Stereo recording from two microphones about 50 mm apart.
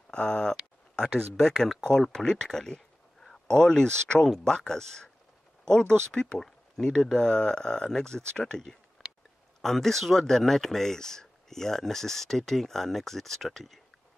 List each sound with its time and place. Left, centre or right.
0.1 s speech: left
9.0 s oink: centre
9.6 s speech: centre